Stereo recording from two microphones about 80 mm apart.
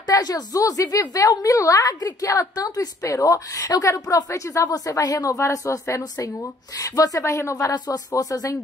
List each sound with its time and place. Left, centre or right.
0.1 s a woman's voice: left
7.7 s a woman's voice: left